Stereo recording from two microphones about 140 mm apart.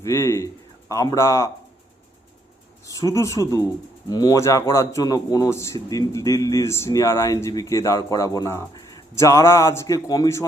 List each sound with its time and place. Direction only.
0.0 s a man's voice: 20° left (ahead or behind)
2.8 s a man's voice: 25° left (ahead or behind)